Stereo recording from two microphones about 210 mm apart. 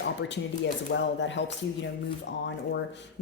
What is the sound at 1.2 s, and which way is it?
Speech, 60° left (ahead or behind).